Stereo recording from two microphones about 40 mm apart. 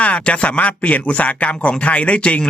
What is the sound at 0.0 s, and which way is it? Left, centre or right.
Speech, left.